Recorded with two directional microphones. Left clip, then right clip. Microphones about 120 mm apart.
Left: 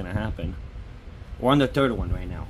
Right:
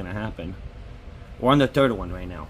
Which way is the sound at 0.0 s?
Centre (ahead or behind).